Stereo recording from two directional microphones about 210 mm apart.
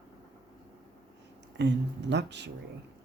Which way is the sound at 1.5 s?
55° right (ahead or behind).